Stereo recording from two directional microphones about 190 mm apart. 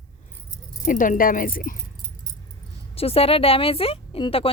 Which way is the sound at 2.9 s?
30° left (ahead or behind).